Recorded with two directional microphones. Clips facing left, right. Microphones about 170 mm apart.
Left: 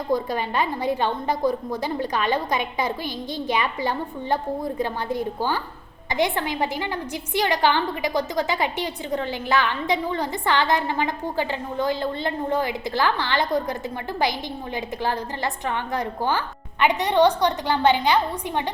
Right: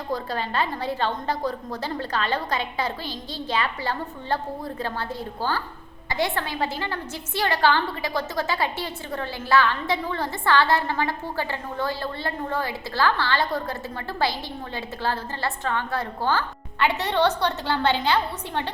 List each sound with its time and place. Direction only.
0.1 s a woman's voice: 15° left (ahead or behind)
15.0 s a woman's voice: 15° left (ahead or behind)